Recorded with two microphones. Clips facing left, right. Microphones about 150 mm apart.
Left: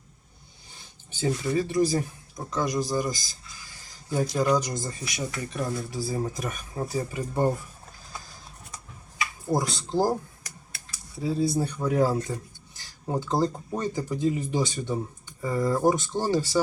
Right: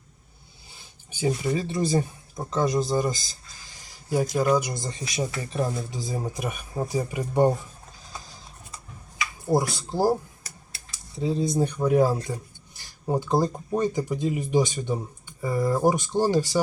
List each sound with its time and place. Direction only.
0.7 s speech: 15° right (ahead or behind)
3.8 s a sound: 10° right (ahead or behind)
4.4 s speech: 10° right (ahead or behind)
4.9 s speech: 25° right (ahead or behind)
9.5 s speech: 10° right (ahead or behind)
10.9 s speech: 20° right (ahead or behind)